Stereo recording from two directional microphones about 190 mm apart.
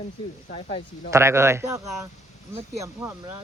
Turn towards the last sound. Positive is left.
turn(degrees=-15)  # may be behind; listen again after turning